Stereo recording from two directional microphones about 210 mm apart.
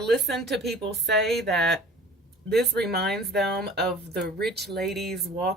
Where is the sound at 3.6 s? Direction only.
50° right (ahead or behind).